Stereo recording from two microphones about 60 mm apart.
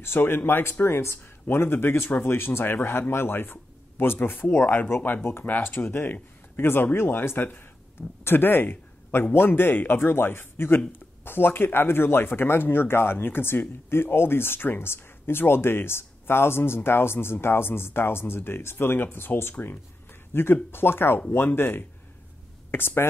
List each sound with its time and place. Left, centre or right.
0.0 s speech: left